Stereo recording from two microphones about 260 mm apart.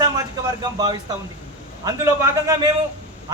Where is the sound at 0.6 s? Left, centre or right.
Centre.